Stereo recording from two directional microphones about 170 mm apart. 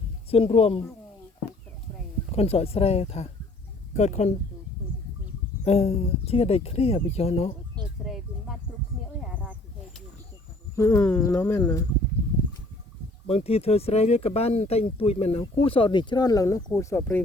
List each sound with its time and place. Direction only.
0.3 s speech: 35° left (ahead or behind)
2.3 s speech: 35° left (ahead or behind)
5.6 s speech: 35° left (ahead or behind)
7.9 s music: centre (ahead or behind)
9.3 s a sound: 10° right (ahead or behind)
10.8 s speech: 20° left (ahead or behind)
13.2 s speech: 35° left (ahead or behind); by 17.2 s 15° left (ahead or behind)